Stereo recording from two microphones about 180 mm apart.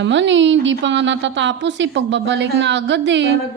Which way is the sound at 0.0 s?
90° right.